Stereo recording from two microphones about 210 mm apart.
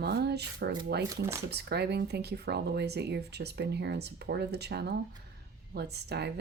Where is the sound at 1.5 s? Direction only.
50° right (ahead or behind).